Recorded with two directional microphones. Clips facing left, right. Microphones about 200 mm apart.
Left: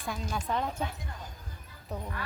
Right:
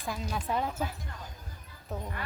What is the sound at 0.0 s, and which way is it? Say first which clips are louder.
A woman's voice: even; centre (ahead or behind).